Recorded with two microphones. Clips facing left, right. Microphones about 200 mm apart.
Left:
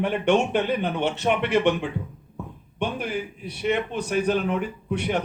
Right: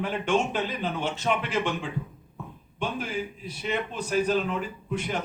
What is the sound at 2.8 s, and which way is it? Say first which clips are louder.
A man's voice: left 3 dB; 65° left (ahead or behind).